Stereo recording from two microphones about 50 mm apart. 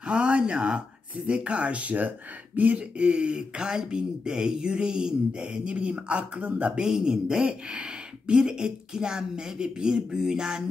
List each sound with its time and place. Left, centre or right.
0.0 s speech: centre
6.8 s speech: centre